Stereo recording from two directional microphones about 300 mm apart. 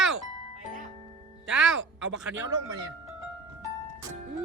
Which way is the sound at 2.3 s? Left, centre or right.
Centre.